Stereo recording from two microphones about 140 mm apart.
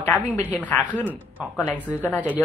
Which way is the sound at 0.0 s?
10° left (ahead or behind).